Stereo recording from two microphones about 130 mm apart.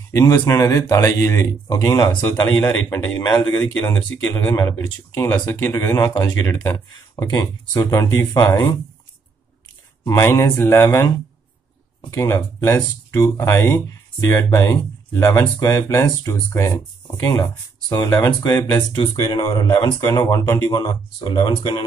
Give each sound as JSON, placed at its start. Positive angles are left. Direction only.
{"t": 0.1, "sound": "speech", "side_deg": 25}
{"t": 6.9, "sound": "speech", "side_deg": 30}
{"t": 10.0, "sound": "speech", "side_deg": 20}
{"t": 18.9, "sound": "speech", "side_deg": 35}
{"t": 20.7, "sound": "speech", "side_deg": 35}